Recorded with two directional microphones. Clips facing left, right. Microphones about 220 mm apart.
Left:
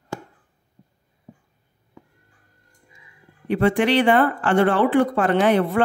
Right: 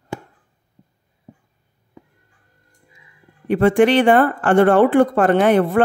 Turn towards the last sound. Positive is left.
turn(degrees=-50)  # may be behind; listen again after turning